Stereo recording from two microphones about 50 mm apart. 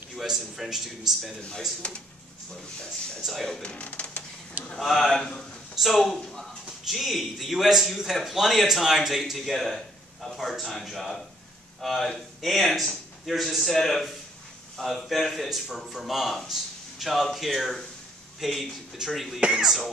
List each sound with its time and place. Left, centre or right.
0.1 s speech: centre
2.5 s speech: centre
3.6 s speech: left
4.7 s speech: centre